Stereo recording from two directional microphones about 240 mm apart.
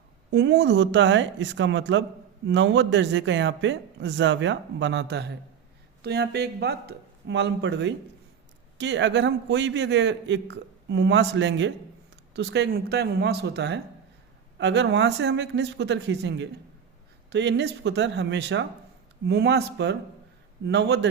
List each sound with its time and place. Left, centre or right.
0.3 s a man's voice: right